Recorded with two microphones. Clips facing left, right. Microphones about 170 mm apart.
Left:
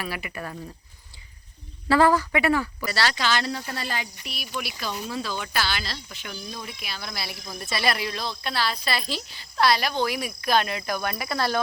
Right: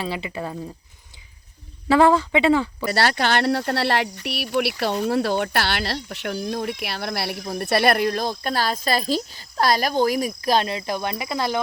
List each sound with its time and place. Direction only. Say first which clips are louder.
0.0 s speech: right 5 dB; 25° right (ahead or behind)
1.9 s speech: right 3 dB; 20° right (ahead or behind)
2.8 s speech: right 5 dB; 55° right (ahead or behind); by 11.6 s 15° right (ahead or behind)